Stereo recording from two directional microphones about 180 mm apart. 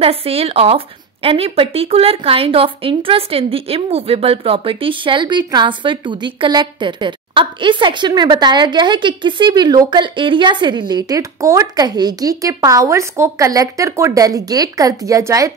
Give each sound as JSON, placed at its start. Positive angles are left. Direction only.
{"t": 0.0, "sound": "speech", "side_deg": -30}